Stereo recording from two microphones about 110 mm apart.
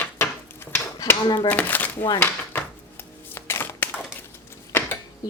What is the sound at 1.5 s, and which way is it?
Speech, 15° left (ahead or behind).